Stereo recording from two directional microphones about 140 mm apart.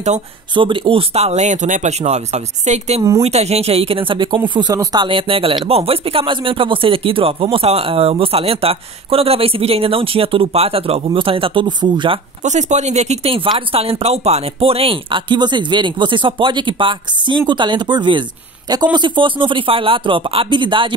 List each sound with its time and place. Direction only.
0.6 s speech: 35° right (ahead or behind)
12.4 s speech: 55° right (ahead or behind); by 20.9 s 35° right (ahead or behind)